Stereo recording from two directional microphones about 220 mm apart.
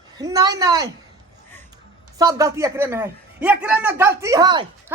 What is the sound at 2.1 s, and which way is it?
A man's voice, 15° right (ahead or behind).